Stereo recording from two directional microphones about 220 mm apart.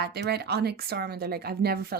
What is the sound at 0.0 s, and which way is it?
A woman's voice, 45° right (ahead or behind).